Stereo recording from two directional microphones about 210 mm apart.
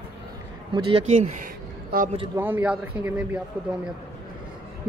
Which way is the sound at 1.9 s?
45° right (ahead or behind).